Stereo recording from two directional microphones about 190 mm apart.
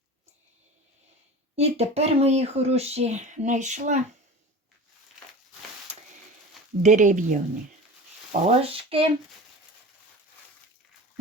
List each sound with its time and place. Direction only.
1.5 s speech: 35° right (ahead or behind)
6.8 s speech: 40° right (ahead or behind)